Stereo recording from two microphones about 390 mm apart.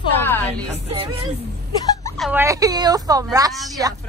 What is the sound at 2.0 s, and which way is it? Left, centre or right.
Speech, centre.